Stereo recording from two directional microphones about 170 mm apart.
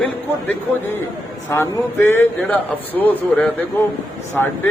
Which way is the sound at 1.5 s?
15° left (ahead or behind).